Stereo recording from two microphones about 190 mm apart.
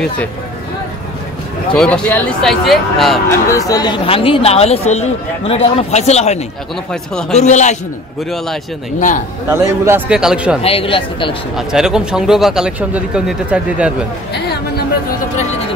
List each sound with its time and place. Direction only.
1.7 s speech: 5° left (ahead or behind)
3.3 s a man's voice: 15° left (ahead or behind); by 6.4 s 35° left (ahead or behind)
6.9 s speech: 5° left (ahead or behind)
7.3 s a man's voice: 35° left (ahead or behind)
9.5 s speech: 10° right (ahead or behind)
10.6 s speech: 30° left (ahead or behind)
11.5 s speech: 5° right (ahead or behind)
14.3 s a sound: 55° left (ahead or behind)